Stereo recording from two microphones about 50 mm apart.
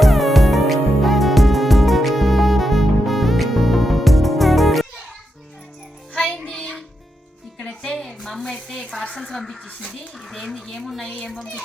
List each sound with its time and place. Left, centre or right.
0.0 s music: centre
6.1 s music: centre
7.8 s a sound: centre
9.3 s speech: centre
11.0 s speech: centre